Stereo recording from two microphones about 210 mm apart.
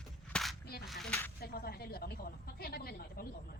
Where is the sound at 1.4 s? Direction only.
45° left (ahead or behind).